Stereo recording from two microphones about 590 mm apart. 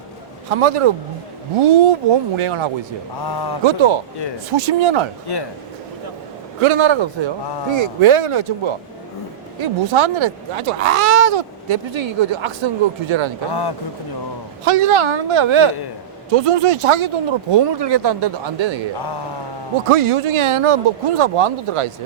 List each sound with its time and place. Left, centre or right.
0.5 s speech: right
3.2 s a man's voice: left
3.6 s speech: right
5.3 s a man's voice: left
6.6 s speech: right
13.5 s a man's voice: left
14.6 s speech: right
16.3 s speech: right
17.5 s speech: right
18.9 s a man's voice: left
19.9 s speech: right